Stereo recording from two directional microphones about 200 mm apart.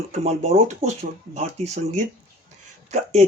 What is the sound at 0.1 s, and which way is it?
Speech, 35° right (ahead or behind).